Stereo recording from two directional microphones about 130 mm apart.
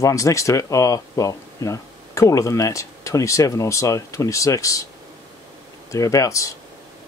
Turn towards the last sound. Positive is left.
turn(degrees=25)  # may be behind; listen again after turning